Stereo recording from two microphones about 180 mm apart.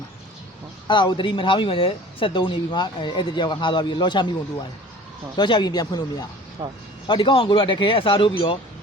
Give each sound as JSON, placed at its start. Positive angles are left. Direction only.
{"t": 0.9, "sound": "speech", "side_deg": 25}
{"t": 5.4, "sound": "speech", "side_deg": 25}